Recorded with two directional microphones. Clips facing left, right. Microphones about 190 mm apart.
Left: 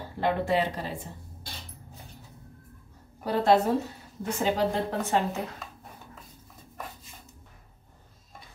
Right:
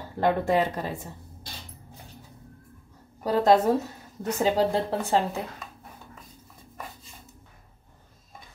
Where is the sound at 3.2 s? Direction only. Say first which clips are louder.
Right 2 dB; 40° right (ahead or behind).